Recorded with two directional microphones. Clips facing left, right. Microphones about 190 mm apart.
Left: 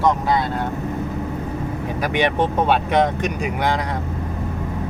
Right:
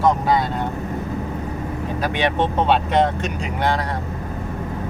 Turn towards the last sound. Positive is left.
turn(degrees=15)  # may be behind; listen again after turning